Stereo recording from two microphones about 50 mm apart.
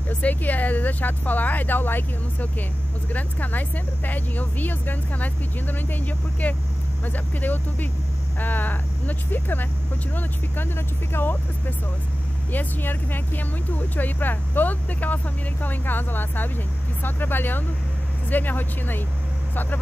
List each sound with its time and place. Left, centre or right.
0.1 s speech: left